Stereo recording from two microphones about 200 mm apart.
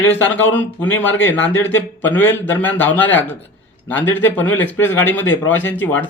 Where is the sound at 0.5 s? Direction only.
10° left (ahead or behind).